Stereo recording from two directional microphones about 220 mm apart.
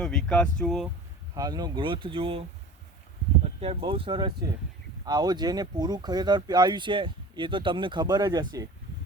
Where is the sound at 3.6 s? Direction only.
25° right (ahead or behind).